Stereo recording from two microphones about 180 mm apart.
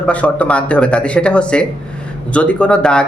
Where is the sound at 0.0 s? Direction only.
5° left (ahead or behind).